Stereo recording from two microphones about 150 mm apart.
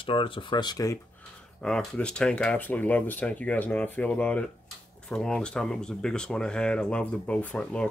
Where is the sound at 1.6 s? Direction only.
5° left (ahead or behind).